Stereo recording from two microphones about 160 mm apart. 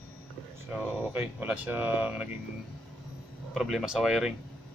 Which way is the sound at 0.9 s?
10° right (ahead or behind).